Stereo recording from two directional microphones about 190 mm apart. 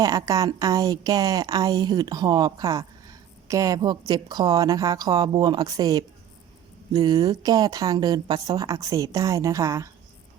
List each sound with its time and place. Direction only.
0.0 s a woman's voice: 20° right (ahead or behind)